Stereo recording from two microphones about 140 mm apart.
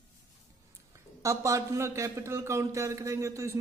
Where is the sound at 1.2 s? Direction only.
20° right (ahead or behind).